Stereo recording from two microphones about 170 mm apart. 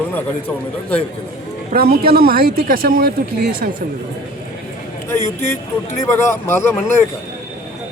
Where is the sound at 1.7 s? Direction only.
65° right (ahead or behind).